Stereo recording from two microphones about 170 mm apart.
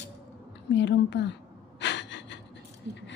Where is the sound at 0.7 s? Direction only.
90° left.